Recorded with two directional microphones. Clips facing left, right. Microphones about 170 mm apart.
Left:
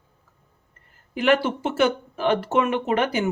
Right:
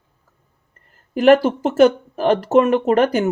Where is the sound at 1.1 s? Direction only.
40° right (ahead or behind).